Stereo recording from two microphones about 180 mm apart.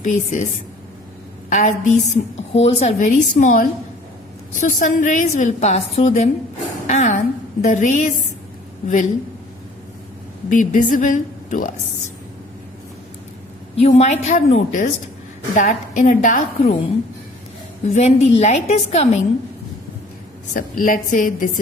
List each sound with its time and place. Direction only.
0.0 s a woman's voice: 45° left (ahead or behind)
1.5 s a woman's voice: 45° left (ahead or behind)
10.5 s a woman's voice: 45° left (ahead or behind)
13.8 s a woman's voice: 40° left (ahead or behind)
20.5 s a woman's voice: 50° left (ahead or behind)